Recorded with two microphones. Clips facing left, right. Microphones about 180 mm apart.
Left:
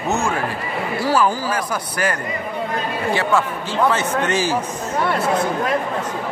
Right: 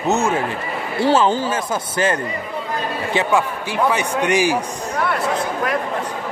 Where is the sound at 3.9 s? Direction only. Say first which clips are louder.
Right 2 dB; 15° right (ahead or behind).